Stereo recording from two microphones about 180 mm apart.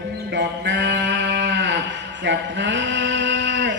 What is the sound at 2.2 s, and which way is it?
Male singing, 80° right.